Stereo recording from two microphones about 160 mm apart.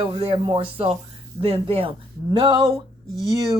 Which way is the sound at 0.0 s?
35° right (ahead or behind).